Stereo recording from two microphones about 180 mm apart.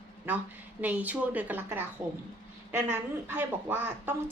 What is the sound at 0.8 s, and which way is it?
A woman's voice, 10° right (ahead or behind).